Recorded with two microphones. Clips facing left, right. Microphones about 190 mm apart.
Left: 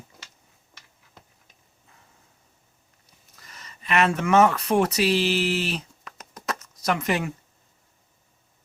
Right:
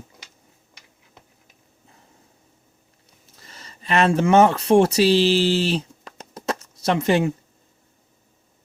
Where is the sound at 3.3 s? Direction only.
30° right (ahead or behind).